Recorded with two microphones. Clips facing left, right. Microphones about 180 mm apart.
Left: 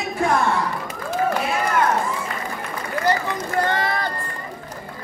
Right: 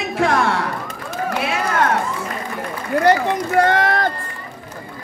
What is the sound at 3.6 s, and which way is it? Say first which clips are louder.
Speech: right 6 dB; 80° right.